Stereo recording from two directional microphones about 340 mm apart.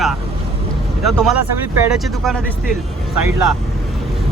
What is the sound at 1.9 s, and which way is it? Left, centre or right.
Speech, centre.